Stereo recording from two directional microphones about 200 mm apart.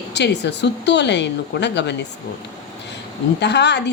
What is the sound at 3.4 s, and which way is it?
Speech, 60° left (ahead or behind).